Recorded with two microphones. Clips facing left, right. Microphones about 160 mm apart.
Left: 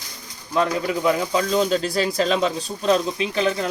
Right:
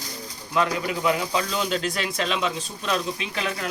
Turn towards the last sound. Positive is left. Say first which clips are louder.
# left 7 dB
turn(degrees=30)  # may be behind; listen again after turning